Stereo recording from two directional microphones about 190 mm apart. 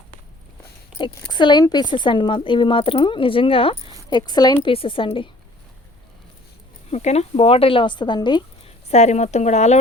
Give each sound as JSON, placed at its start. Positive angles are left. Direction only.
{"t": 0.9, "sound": "speech", "side_deg": 25}
{"t": 6.9, "sound": "speech", "side_deg": 35}
{"t": 8.9, "sound": "speech", "side_deg": 35}